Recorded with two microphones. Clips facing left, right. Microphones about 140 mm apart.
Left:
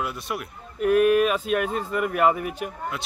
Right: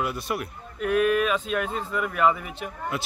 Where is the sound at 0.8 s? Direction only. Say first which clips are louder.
Left 4 dB; 45° left (ahead or behind).